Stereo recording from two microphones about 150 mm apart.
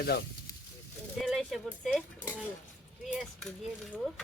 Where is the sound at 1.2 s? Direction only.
Centre (ahead or behind).